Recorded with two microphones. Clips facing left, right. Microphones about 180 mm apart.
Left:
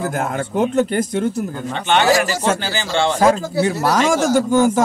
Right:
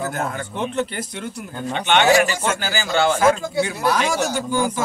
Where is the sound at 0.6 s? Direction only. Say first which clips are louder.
Left 8 dB; 45° left (ahead or behind).